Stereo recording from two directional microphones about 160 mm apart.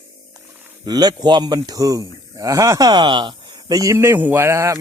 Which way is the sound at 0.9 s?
25° right (ahead or behind).